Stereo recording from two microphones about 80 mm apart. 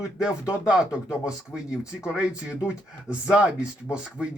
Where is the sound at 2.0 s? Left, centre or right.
Centre.